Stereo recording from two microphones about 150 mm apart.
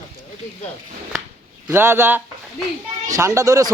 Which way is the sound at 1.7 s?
15° right (ahead or behind).